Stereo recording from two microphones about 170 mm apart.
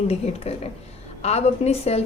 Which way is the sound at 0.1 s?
35° left (ahead or behind).